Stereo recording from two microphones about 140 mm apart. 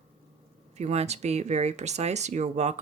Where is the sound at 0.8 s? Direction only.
50° right (ahead or behind).